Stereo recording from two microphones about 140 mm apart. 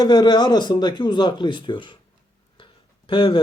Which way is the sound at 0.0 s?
30° left (ahead or behind).